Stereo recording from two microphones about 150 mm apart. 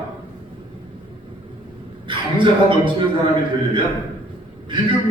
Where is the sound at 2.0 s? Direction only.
35° right (ahead or behind).